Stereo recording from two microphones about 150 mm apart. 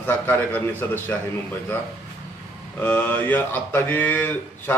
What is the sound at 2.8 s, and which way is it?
Speech, 10° left (ahead or behind).